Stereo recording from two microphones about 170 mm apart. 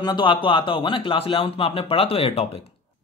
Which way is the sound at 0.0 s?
25° left (ahead or behind).